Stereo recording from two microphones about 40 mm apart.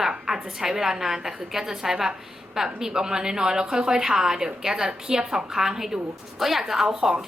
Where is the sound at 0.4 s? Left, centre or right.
Centre.